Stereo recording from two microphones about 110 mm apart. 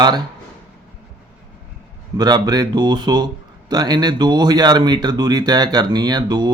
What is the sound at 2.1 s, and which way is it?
Speech, 40° right (ahead or behind).